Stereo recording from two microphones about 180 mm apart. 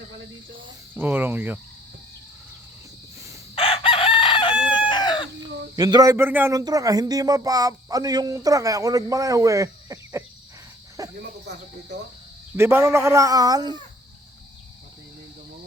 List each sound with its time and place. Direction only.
0.9 s a man's voice: 10° right (ahead or behind)
3.5 s chicken: 30° left (ahead or behind)
5.7 s a man's voice: 20° right (ahead or behind)
12.5 s a man's voice: 15° right (ahead or behind)